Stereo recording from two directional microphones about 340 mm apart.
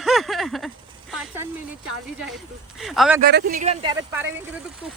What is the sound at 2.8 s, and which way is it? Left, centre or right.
Speech, centre.